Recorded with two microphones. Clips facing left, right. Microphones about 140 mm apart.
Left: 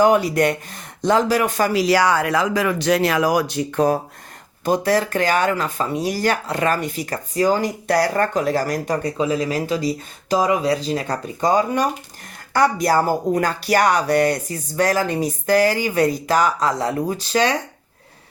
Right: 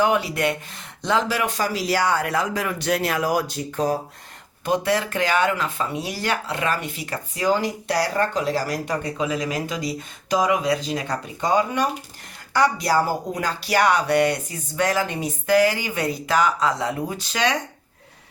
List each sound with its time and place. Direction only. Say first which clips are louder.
0.0 s a man's voice: left 5 dB; 40° left (ahead or behind); by 3.9 s 65° left (ahead or behind)
4.6 s speech: left 3 dB; 40° left (ahead or behind)